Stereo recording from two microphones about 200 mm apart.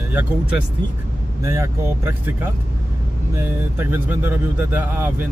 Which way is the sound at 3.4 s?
10° right (ahead or behind).